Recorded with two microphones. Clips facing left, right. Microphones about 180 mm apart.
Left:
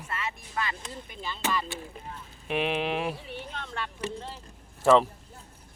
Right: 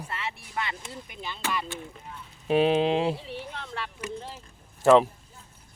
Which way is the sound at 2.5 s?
30° right (ahead or behind).